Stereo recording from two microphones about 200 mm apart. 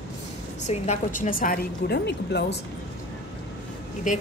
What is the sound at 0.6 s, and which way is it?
A woman's voice, 35° left (ahead or behind).